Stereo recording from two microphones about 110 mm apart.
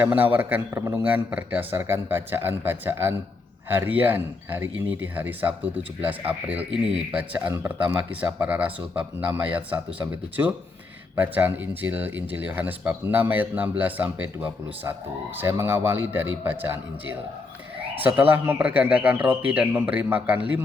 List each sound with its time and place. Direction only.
0.0 s a man's voice: 15° right (ahead or behind)
7.5 s a man's voice: 25° right (ahead or behind)
7.9 s a man's voice: 15° right (ahead or behind)
18.0 s speech: 15° right (ahead or behind)